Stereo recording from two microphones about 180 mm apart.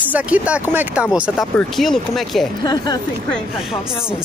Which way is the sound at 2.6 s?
20° left (ahead or behind).